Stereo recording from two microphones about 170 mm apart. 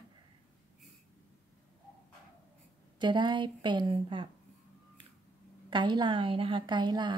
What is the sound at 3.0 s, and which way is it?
Speech, 25° right (ahead or behind).